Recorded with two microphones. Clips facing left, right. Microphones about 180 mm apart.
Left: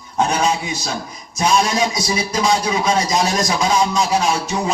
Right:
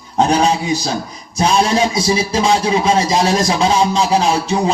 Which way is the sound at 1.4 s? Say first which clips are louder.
Right 3 dB; 30° right (ahead or behind).